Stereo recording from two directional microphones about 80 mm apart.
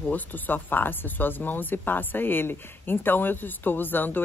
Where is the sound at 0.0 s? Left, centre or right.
Left.